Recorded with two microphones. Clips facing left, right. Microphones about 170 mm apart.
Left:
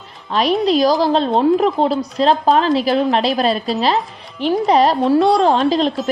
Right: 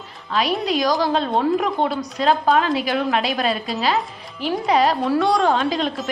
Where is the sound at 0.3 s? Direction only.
35° left (ahead or behind).